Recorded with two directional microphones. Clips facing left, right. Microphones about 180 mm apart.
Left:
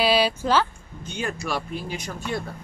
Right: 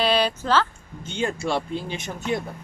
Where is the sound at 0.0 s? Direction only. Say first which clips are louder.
Left 1 dB; 10° left (ahead or behind).